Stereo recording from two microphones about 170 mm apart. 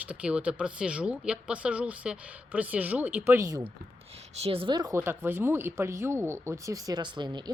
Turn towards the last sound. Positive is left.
turn(degrees=-25)  # may be behind; listen again after turning